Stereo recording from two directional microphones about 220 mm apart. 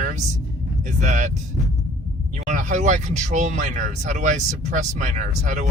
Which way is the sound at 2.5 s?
35° right (ahead or behind).